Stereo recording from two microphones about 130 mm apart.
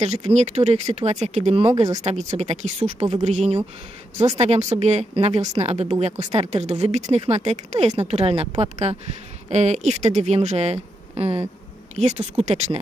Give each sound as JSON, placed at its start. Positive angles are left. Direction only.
{"t": 0.0, "sound": "a woman's voice", "side_deg": -55}